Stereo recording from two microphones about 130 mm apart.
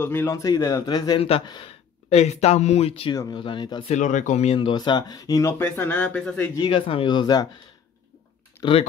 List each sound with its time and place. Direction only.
0.0 s speech: 20° left (ahead or behind); by 1.2 s 35° left (ahead or behind)
1.2 s speech: 45° left (ahead or behind)
3.1 s speech: 30° left (ahead or behind)
3.9 s speech: 75° left (ahead or behind)
4.6 s speech: 35° left (ahead or behind); by 6.5 s 10° left (ahead or behind)
6.6 s speech: 45° left (ahead or behind)
8.6 s typing: 15° left (ahead or behind)